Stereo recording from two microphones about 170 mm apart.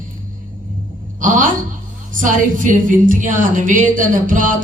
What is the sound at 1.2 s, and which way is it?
A woman's voice, 50° right (ahead or behind).